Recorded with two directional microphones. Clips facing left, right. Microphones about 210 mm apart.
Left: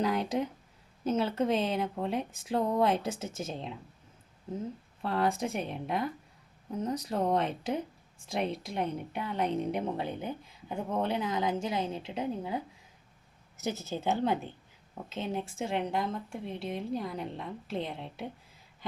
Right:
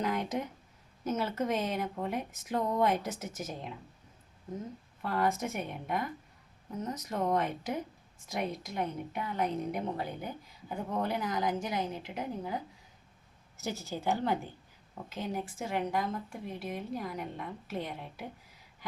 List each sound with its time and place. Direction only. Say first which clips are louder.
0.0 s speech: left 3 dB; 30° left (ahead or behind)
5.0 s speech: left 1 dB; 30° left (ahead or behind)
13.6 s speech: left 3 dB; 20° left (ahead or behind)